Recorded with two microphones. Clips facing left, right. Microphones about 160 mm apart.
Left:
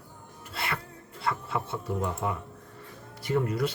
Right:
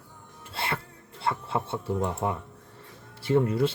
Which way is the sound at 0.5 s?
30° right (ahead or behind).